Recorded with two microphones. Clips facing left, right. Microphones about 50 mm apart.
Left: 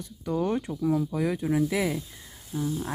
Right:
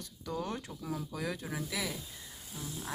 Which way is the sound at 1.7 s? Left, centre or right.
Left.